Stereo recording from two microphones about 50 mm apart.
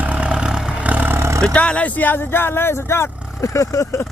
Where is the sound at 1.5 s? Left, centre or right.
Left.